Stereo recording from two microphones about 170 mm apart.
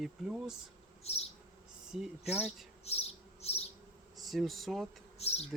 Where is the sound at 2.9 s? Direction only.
35° left (ahead or behind).